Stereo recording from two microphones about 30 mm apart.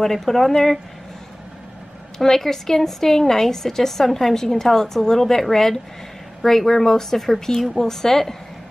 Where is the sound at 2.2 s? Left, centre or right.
Centre.